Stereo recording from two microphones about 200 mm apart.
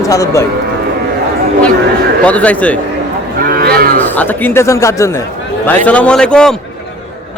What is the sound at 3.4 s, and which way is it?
Cattle, 50° right (ahead or behind).